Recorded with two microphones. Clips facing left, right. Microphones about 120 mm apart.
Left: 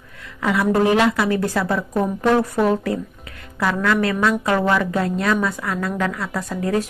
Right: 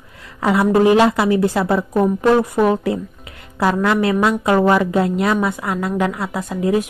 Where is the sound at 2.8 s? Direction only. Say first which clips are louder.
Right 3 dB; 25° right (ahead or behind).